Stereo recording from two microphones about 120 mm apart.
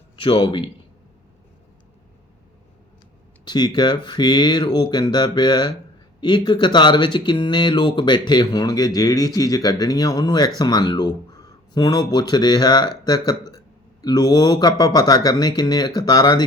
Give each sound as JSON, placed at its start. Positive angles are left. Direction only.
{"t": 0.2, "sound": "a man's voice", "side_deg": 45}
{"t": 3.4, "sound": "speech", "side_deg": 35}